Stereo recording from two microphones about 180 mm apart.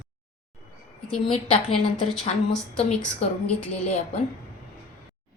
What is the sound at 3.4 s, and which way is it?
Speech, 5° left (ahead or behind).